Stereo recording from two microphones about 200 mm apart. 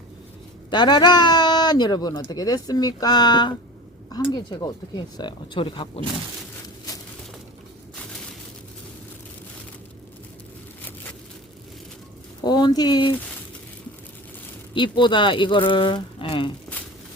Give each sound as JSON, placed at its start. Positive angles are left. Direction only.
{"t": 0.7, "sound": "speech", "side_deg": 20}
{"t": 12.5, "sound": "speech", "side_deg": 20}
{"t": 14.7, "sound": "speech", "side_deg": 25}